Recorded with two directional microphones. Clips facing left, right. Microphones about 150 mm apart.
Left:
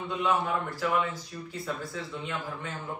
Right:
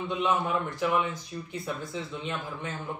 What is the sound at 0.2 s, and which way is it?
Speech, 20° right (ahead or behind).